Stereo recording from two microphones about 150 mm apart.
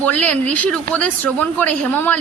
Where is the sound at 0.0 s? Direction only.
10° left (ahead or behind).